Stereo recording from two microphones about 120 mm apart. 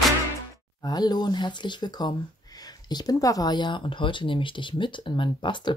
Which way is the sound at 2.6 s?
35° left (ahead or behind).